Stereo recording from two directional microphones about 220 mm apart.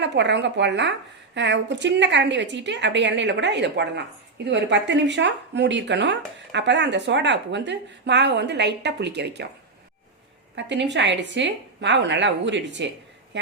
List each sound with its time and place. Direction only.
0.0 s speech: 55° right (ahead or behind)
10.5 s speech: 55° right (ahead or behind)